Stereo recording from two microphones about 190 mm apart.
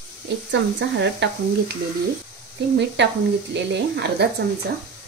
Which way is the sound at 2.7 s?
65° right (ahead or behind).